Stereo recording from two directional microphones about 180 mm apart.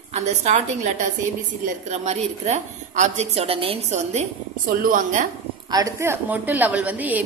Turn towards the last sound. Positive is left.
turn(degrees=-10)  # may be behind; listen again after turning